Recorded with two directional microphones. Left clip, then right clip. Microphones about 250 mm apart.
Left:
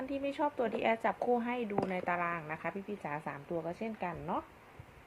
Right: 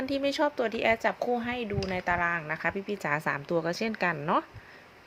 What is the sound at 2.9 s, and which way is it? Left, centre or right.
Speech, right.